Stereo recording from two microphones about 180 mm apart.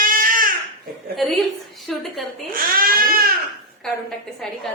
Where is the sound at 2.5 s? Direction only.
55° right (ahead or behind).